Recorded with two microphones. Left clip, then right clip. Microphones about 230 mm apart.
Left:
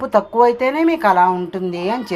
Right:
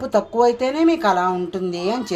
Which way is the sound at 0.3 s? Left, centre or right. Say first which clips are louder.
Left 3 dB; centre.